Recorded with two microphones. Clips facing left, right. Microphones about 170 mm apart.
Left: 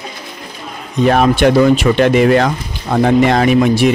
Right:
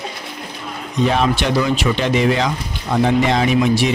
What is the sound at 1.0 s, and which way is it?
Speech, 55° left (ahead or behind).